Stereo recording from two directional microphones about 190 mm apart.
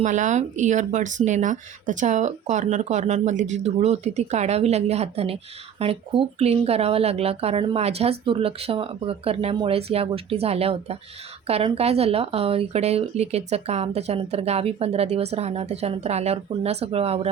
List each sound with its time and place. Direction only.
0.0 s speech: 40° right (ahead or behind)